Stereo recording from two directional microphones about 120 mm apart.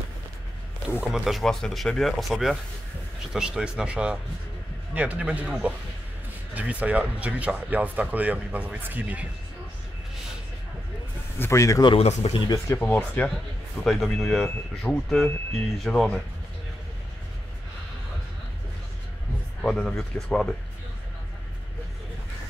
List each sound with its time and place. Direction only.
0.8 s speech: 5° right (ahead or behind)
11.3 s speech: 20° left (ahead or behind)
12.0 s speech: 60° left (ahead or behind)
12.6 s speech: 15° left (ahead or behind)
13.8 s speech: 5° left (ahead or behind)
19.6 s speech: 5° left (ahead or behind)